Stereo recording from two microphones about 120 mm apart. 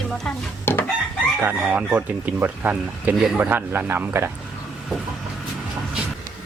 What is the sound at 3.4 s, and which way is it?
Speech, 15° right (ahead or behind).